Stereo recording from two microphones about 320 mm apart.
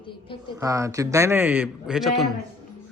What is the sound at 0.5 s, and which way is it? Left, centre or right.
Speech, centre.